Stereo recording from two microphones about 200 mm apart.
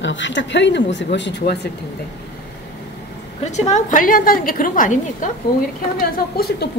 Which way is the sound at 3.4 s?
35° left (ahead or behind).